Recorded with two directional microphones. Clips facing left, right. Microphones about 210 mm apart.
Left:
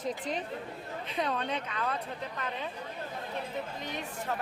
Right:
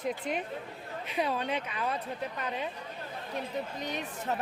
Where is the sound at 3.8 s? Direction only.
20° right (ahead or behind).